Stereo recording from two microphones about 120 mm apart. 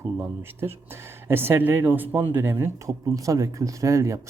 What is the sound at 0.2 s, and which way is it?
Speech, 20° right (ahead or behind).